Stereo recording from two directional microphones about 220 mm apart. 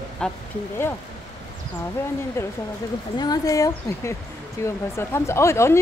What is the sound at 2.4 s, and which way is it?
A woman's voice, 10° left (ahead or behind).